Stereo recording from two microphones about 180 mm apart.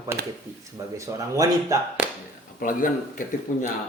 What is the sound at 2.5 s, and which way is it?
Speech, 50° left (ahead or behind).